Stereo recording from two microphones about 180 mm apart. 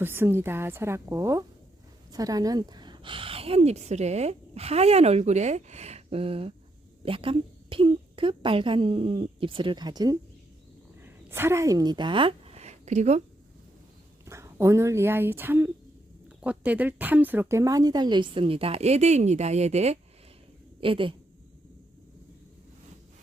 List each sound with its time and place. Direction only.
0.0 s a woman's voice: 10° right (ahead or behind); by 13.2 s 40° right (ahead or behind)
14.3 s speech: 15° right (ahead or behind)